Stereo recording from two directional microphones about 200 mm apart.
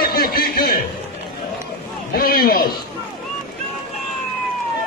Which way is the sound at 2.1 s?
50° left (ahead or behind).